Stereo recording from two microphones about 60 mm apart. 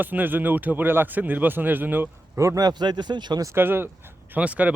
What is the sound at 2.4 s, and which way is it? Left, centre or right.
Speech, right.